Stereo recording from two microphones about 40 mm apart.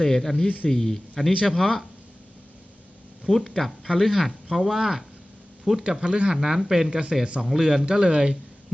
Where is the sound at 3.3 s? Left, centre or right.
Centre.